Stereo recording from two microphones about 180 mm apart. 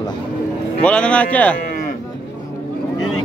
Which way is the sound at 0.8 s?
5° left (ahead or behind).